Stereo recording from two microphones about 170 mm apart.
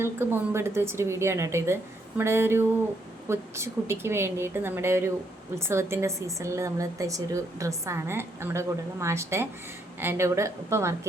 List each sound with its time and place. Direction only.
0.0 s a woman's voice: 15° right (ahead or behind)